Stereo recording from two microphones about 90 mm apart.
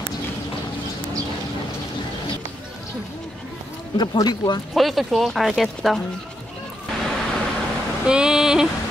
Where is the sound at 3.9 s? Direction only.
50° left (ahead or behind).